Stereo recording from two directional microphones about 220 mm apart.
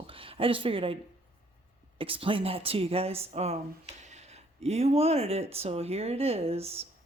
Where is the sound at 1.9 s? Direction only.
25° right (ahead or behind).